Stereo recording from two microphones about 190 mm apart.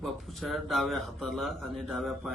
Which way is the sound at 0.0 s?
Centre (ahead or behind).